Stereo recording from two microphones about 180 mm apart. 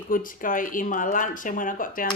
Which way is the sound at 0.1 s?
50° left (ahead or behind).